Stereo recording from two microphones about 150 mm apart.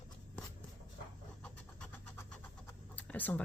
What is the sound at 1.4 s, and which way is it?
Vehicle, 5° left (ahead or behind).